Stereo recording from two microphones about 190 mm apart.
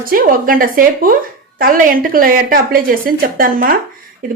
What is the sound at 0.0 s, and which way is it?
Speech, 50° right (ahead or behind).